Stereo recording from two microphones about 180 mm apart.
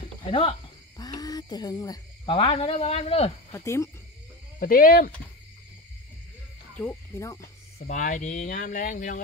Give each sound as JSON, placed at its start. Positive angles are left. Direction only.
{"t": 0.2, "sound": "speech", "side_deg": 30}
{"t": 3.5, "sound": "speech", "side_deg": 15}
{"t": 4.6, "sound": "speech", "side_deg": 55}
{"t": 6.8, "sound": "speech", "side_deg": 15}
{"t": 7.8, "sound": "speech", "side_deg": 45}